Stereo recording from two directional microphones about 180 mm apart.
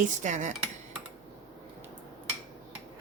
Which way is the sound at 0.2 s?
40° right (ahead or behind).